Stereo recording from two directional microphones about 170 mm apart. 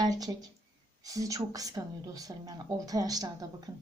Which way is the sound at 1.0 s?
20° right (ahead or behind).